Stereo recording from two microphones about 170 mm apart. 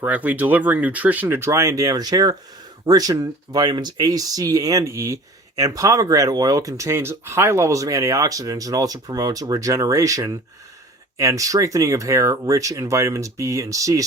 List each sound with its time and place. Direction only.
0.0 s speech: 10° right (ahead or behind)